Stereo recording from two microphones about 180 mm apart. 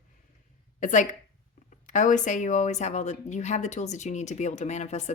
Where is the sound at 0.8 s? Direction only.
45° left (ahead or behind).